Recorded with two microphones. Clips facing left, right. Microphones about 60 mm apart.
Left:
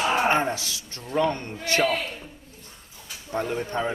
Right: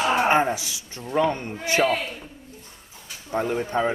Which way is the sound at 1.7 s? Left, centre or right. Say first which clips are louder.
Right 2 dB; centre.